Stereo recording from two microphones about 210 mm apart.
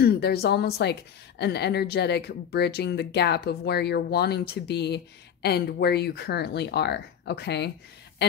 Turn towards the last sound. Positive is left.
turn(degrees=55)  # may be behind; listen again after turning